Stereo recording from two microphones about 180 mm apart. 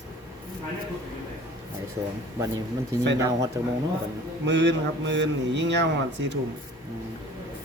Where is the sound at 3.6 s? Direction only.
15° right (ahead or behind).